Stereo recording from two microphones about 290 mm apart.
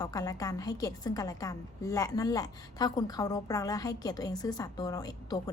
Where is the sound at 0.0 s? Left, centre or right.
Centre.